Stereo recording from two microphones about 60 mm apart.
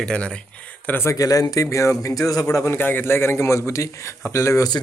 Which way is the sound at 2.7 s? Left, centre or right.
Left.